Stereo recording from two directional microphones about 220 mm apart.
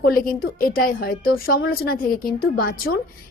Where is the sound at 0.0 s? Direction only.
40° left (ahead or behind).